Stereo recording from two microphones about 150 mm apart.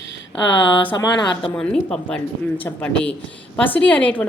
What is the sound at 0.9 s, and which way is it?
Speech, 30° left (ahead or behind).